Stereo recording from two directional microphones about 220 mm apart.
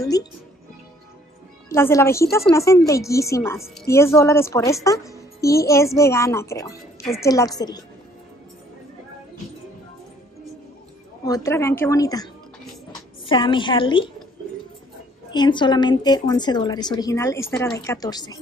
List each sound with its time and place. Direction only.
0.0 s speech: 15° left (ahead or behind)
1.7 s a child's voice: 10° left (ahead or behind)
11.2 s a child's voice: 15° left (ahead or behind)
15.3 s a woman's voice: 20° left (ahead or behind)